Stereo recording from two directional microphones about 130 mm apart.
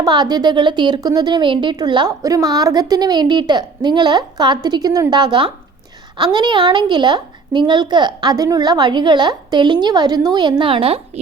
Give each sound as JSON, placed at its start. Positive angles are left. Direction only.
{"t": 0.0, "sound": "a woman's voice", "side_deg": -35}
{"t": 10.6, "sound": "a woman's voice", "side_deg": -45}